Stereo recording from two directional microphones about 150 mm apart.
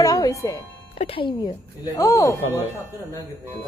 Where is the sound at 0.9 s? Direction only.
40° left (ahead or behind).